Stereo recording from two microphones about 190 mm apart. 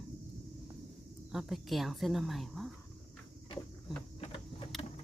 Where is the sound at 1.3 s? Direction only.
Centre (ahead or behind).